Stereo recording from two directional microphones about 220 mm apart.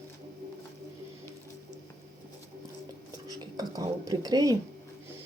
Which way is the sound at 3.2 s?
15° right (ahead or behind).